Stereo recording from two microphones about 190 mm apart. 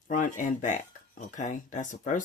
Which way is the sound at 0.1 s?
45° left (ahead or behind).